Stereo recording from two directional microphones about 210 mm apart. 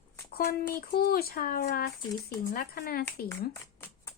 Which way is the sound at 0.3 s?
45° left (ahead or behind).